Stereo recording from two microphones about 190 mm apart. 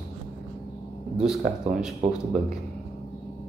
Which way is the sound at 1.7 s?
40° right (ahead or behind).